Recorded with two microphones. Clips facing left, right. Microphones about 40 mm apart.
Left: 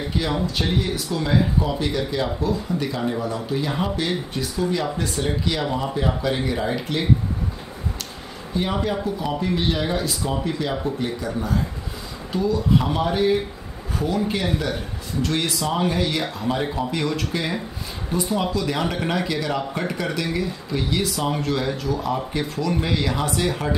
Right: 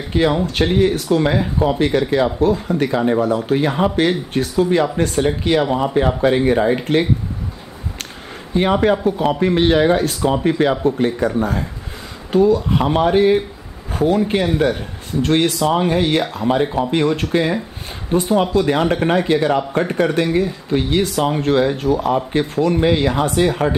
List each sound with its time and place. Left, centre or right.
0.1 s speech: right
5.6 s speech: right
6.2 s speech: right
8.5 s speech: right
10.7 s speech: right
11.0 s speech: right
16.4 s speech: right
18.1 s speech: right